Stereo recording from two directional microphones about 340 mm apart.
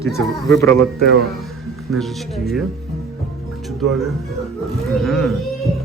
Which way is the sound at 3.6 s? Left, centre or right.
Centre.